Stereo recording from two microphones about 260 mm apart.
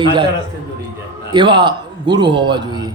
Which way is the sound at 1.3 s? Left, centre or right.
Centre.